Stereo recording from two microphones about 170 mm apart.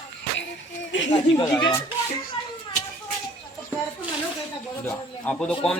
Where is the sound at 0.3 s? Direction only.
90° left.